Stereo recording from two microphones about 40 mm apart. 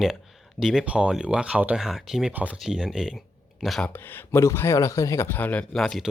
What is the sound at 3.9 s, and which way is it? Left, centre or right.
A man's voice, left.